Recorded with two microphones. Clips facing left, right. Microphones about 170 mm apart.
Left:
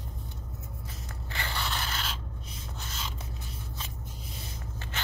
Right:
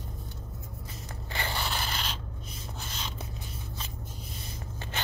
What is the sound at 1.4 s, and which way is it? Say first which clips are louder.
Scrape: right 2 dB; 20° right (ahead or behind).